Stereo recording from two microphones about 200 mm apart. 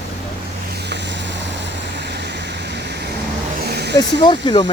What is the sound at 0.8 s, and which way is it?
Vehicle, 60° right (ahead or behind).